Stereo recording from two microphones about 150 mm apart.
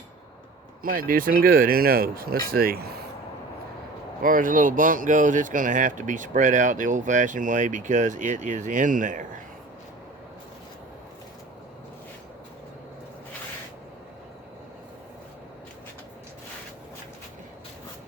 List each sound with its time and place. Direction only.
0.8 s speech: 70° right (ahead or behind); by 2.9 s 85° right
4.2 s speech: 65° right (ahead or behind)